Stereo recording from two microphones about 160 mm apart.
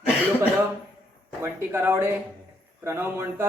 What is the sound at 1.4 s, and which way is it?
Speech, 15° right (ahead or behind).